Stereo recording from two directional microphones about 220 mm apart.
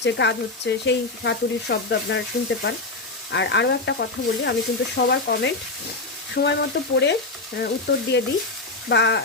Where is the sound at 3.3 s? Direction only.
50° left (ahead or behind).